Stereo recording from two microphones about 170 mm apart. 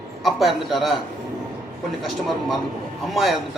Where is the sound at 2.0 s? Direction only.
Centre (ahead or behind).